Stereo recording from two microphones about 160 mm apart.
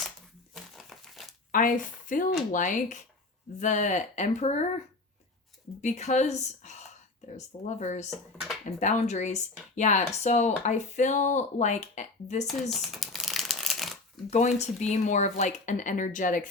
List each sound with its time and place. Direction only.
0.5 s crumpling: centre (ahead or behind)
1.5 s speech: 55° left (ahead or behind)
5.8 s speech: 45° left (ahead or behind)
8.1 s speech: centre (ahead or behind)
8.8 s speech: 45° left (ahead or behind)
12.7 s shuffling cards: centre (ahead or behind)
14.3 s speech: 45° left (ahead or behind)